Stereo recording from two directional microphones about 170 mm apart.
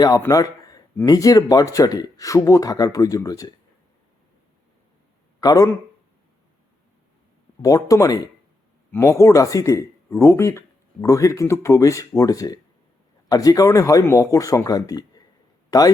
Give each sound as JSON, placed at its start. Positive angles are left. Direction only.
{"t": 0.2, "sound": "speech", "side_deg": 20}
{"t": 5.4, "sound": "speech", "side_deg": 20}
{"t": 7.6, "sound": "speech", "side_deg": 20}